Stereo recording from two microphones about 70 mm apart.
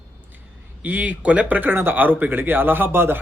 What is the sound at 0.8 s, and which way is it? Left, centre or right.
Speech, right.